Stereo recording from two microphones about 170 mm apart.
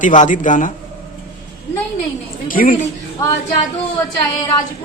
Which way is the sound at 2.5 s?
55° left (ahead or behind).